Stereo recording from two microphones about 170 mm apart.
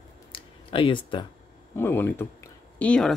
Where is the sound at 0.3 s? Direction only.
30° left (ahead or behind).